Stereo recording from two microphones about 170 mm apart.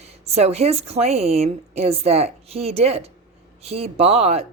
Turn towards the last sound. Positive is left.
turn(degrees=-40)  # may be behind; listen again after turning